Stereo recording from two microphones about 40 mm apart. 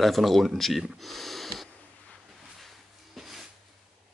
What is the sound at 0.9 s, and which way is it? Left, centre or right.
Snort, centre.